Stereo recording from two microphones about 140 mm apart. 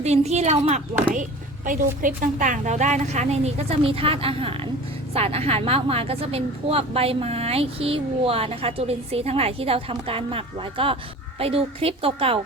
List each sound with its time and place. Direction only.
0.0 s a woman's voice: 50° right (ahead or behind)
1.1 s a woman's voice: 70° right (ahead or behind); by 12.4 s 40° right (ahead or behind)